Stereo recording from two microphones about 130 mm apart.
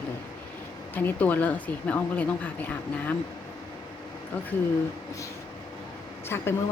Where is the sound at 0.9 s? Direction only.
15° left (ahead or behind).